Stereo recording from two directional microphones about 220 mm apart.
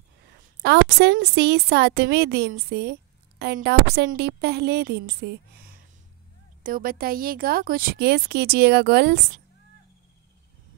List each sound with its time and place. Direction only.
0.6 s a woman's voice: 50° right (ahead or behind)